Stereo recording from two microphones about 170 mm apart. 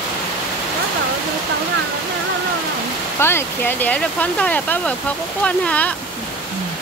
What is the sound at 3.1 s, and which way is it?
Speech, 15° left (ahead or behind).